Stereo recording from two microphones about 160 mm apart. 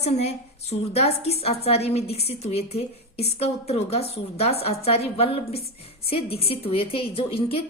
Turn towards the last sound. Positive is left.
turn(degrees=35)  # may be behind; listen again after turning